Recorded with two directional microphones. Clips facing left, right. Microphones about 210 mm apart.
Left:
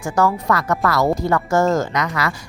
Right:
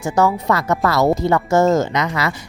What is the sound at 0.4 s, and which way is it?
Speech, 25° right (ahead or behind).